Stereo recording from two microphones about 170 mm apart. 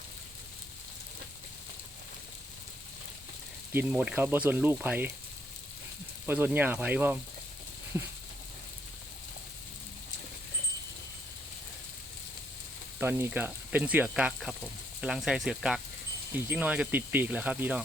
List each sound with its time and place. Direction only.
3.7 s speech: 10° right (ahead or behind)
6.2 s speech: 10° right (ahead or behind)
13.0 s speech: 15° right (ahead or behind)